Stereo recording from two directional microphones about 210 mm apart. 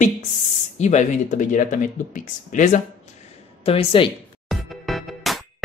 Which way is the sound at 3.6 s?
25° left (ahead or behind).